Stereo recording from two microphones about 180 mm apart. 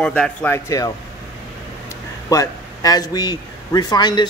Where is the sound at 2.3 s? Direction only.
20° left (ahead or behind).